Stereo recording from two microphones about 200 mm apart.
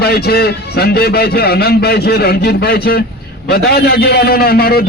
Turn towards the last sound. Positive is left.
turn(degrees=50)  # may be behind; listen again after turning